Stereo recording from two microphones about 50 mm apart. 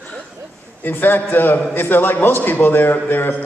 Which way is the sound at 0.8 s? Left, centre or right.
Left.